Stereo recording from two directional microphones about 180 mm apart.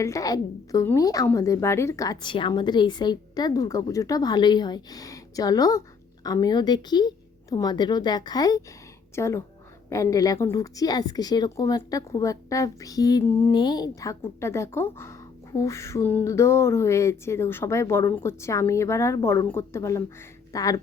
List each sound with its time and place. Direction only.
0.0 s a woman's voice: 20° left (ahead or behind)